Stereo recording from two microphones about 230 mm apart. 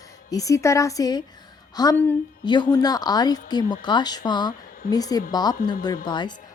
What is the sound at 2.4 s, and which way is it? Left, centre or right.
A woman's voice, centre.